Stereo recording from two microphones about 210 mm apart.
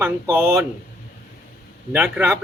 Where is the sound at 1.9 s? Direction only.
10° right (ahead or behind).